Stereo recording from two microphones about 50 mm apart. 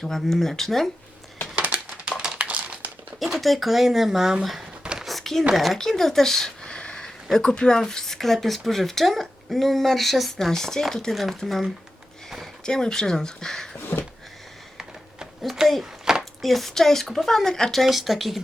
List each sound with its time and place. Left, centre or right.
0.0 s speech: centre
1.5 s crumpling: right
3.2 s speech: centre
4.9 s a sound: centre
7.3 s speech: centre
12.6 s speech: centre
13.7 s a sound: left
15.5 s speech: centre
15.8 s a sound: centre
16.4 s speech: centre
17.8 s speech: centre